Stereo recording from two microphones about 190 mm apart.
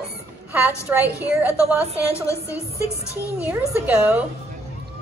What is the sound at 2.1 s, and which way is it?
Speech, 15° left (ahead or behind).